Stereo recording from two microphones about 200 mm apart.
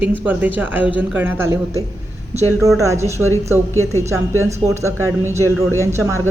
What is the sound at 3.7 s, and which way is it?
Speech, 15° left (ahead or behind).